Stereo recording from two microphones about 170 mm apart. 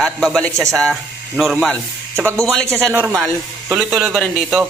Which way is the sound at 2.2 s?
15° right (ahead or behind).